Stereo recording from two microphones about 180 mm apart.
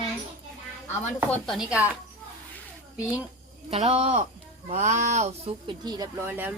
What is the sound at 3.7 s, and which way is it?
Speech, 35° right (ahead or behind).